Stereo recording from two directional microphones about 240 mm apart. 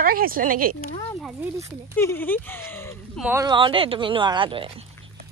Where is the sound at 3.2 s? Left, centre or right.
Centre.